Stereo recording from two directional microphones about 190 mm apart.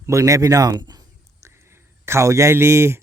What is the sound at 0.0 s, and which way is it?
A man's voice, 15° right (ahead or behind).